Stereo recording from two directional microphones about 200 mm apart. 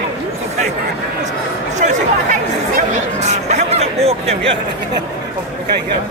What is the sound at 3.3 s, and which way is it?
Speech, 35° right (ahead or behind).